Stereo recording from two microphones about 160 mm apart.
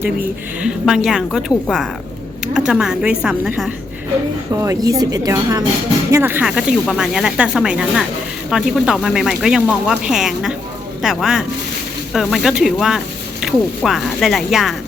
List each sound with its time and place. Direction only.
0.6 s speech: 5° right (ahead or behind)
4.6 s a woman's voice: 20° right (ahead or behind); by 14.8 s centre (ahead or behind)